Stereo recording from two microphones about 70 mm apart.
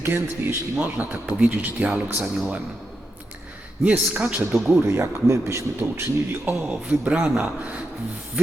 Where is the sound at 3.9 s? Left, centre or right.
Right.